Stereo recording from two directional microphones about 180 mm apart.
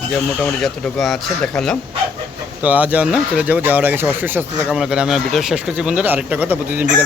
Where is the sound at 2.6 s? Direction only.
10° right (ahead or behind).